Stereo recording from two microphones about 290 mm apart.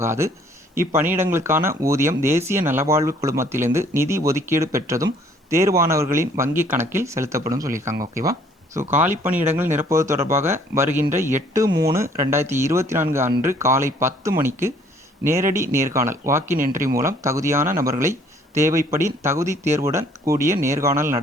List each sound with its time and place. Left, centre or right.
0.0 s speech: centre
11.7 s speech: right
11.9 s speech: centre